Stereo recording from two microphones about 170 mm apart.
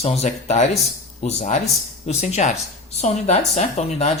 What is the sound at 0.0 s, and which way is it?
Speech, 40° left (ahead or behind).